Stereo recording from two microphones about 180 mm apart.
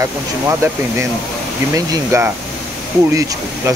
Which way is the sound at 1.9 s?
15° right (ahead or behind).